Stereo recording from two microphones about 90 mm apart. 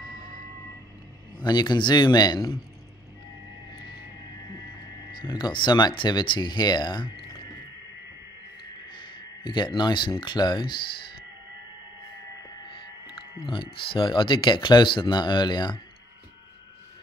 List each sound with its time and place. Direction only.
0.0 s vehicle: 55° left (ahead or behind)
1.4 s speech: 55° left (ahead or behind)
5.1 s speech: 55° left (ahead or behind)
9.4 s speech: 65° left (ahead or behind)
13.1 s speech: 65° left (ahead or behind)